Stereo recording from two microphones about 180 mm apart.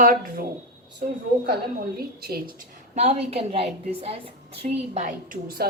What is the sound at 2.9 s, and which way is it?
A woman's voice, 35° right (ahead or behind).